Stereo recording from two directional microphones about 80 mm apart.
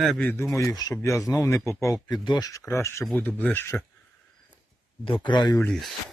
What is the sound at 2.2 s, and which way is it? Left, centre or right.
Speech, left.